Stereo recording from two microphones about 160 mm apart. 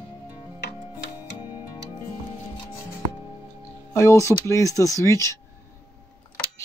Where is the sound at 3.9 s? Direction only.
20° left (ahead or behind).